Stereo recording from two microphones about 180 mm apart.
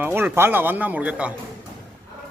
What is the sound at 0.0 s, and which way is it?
Speech, 10° right (ahead or behind).